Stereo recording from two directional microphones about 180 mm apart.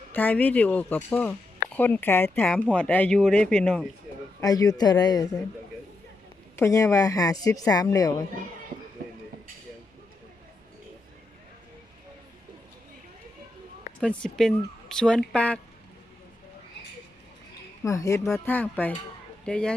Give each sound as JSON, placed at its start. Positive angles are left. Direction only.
{"t": 0.1, "sound": "speech", "side_deg": 10}
{"t": 4.4, "sound": "speech", "side_deg": 20}
{"t": 6.6, "sound": "speech", "side_deg": 15}
{"t": 14.0, "sound": "a woman's voice", "side_deg": 5}
{"t": 17.8, "sound": "a woman's voice", "side_deg": 15}